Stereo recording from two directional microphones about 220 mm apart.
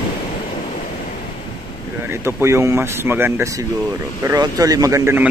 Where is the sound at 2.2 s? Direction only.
10° right (ahead or behind).